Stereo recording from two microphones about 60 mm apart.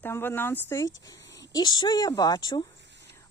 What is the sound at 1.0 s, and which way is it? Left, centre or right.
Speech, left.